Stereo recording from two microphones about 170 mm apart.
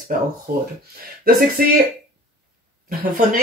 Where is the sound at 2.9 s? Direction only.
60° right (ahead or behind).